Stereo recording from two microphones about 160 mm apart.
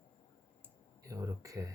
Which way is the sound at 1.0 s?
20° right (ahead or behind).